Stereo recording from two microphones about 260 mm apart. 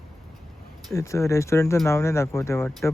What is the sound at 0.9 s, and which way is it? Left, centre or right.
Speech, centre.